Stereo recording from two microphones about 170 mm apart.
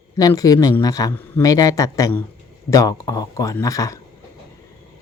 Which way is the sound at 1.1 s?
10° left (ahead or behind).